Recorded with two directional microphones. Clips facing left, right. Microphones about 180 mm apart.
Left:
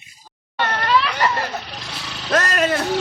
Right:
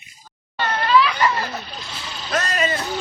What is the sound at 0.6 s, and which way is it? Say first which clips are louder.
Vehicle: right 1 dB; 70° left (ahead or behind).